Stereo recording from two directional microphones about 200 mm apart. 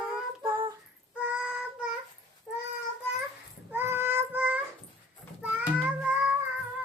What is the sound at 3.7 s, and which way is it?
Child singing, 10° right (ahead or behind).